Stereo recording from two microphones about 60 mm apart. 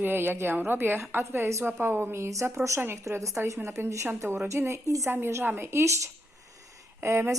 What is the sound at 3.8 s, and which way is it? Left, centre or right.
Speech, right.